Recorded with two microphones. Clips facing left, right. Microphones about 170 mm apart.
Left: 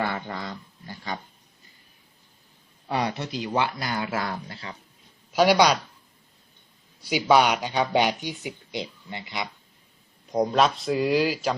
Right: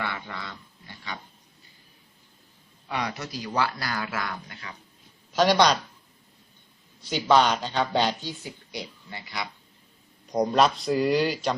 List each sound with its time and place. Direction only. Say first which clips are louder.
0.0 s a sound: left 5 dB; 40° left (ahead or behind)
2.8 s speech: left 4 dB; 30° left (ahead or behind)
5.3 s speech: left 2 dB; 10° left (ahead or behind)
7.3 s speech: left 1 dB; 10° left (ahead or behind)
10.2 s speech: even; centre (ahead or behind)